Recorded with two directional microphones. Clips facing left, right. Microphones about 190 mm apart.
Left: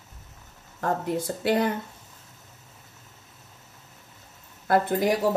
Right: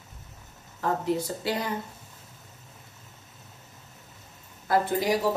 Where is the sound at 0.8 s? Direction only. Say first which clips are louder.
Even; 55° left (ahead or behind).